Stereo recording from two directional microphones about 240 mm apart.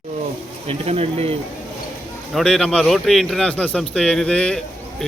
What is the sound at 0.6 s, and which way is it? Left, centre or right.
Speech, right.